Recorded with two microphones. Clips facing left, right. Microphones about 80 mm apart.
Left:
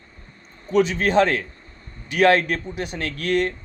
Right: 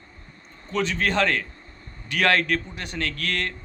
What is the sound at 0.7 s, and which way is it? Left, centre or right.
Speech, centre.